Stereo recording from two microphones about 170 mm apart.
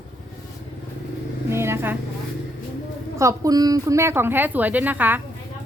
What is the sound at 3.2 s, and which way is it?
A child's voice, 20° right (ahead or behind).